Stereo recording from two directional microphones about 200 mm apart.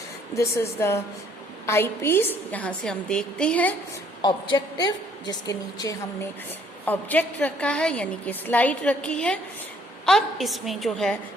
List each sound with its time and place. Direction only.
0.3 s a woman's voice: 15° left (ahead or behind)
4.2 s a woman's voice: 20° left (ahead or behind); by 11.2 s centre (ahead or behind)